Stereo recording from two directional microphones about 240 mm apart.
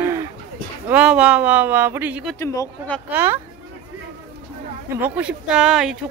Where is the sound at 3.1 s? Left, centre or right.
Centre.